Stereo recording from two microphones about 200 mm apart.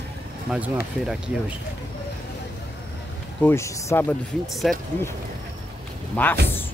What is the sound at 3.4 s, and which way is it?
Speech, 15° left (ahead or behind).